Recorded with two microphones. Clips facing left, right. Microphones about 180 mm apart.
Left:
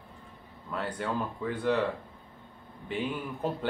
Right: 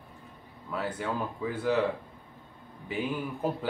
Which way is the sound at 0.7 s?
5° right (ahead or behind).